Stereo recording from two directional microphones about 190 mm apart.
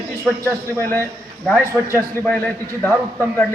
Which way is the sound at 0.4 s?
10° left (ahead or behind).